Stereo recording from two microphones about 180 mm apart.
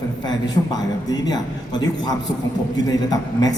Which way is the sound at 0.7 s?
20° left (ahead or behind).